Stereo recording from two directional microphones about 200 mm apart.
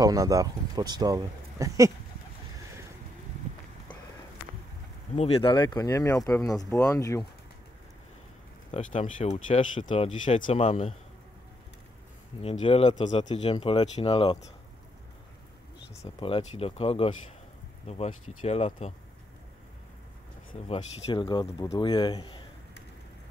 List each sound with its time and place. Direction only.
0.0 s speech: 15° right (ahead or behind)
5.1 s speech: 30° left (ahead or behind)
8.7 s speech: 35° left (ahead or behind)
12.4 s speech: 30° left (ahead or behind)
13.0 s speech: 35° left (ahead or behind)
16.2 s speech: 25° left (ahead or behind)
20.6 s speech: 25° left (ahead or behind)